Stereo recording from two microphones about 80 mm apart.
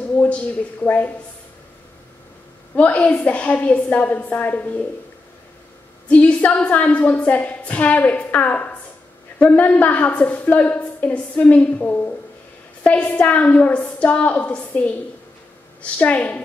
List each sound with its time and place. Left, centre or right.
0.2 s speech: left
2.7 s a woman's voice: centre
6.0 s a woman's voice: centre